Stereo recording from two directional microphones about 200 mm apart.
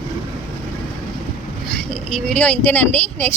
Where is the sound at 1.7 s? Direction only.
5° left (ahead or behind).